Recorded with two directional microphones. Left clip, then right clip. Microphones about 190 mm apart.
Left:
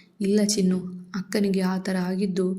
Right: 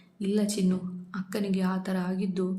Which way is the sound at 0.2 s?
15° left (ahead or behind).